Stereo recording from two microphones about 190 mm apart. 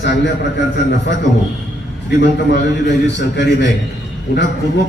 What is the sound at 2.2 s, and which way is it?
A man's voice, 65° left (ahead or behind).